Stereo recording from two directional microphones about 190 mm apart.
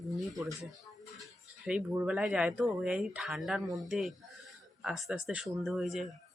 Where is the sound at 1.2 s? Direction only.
5° right (ahead or behind).